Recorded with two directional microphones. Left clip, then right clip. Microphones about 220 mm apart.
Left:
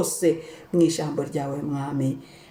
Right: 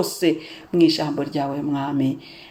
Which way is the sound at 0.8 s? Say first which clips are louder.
Right 4 dB; 20° right (ahead or behind).